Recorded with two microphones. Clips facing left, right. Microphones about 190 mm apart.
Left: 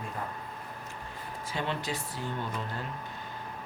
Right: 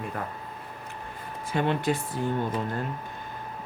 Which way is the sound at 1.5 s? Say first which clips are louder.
Right 8 dB; 55° right (ahead or behind).